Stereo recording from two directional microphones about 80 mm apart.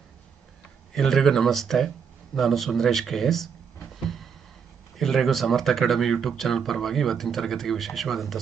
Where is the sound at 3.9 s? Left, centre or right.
Centre.